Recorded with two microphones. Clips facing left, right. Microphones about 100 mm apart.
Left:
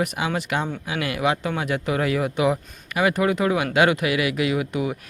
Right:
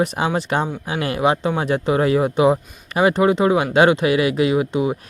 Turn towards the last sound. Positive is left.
turn(degrees=-25)  # may be behind; listen again after turning